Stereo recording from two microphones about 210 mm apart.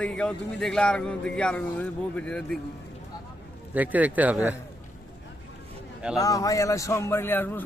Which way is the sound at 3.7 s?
10° right (ahead or behind).